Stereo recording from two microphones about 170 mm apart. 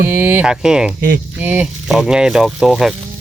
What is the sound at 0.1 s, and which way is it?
Speech, 10° right (ahead or behind).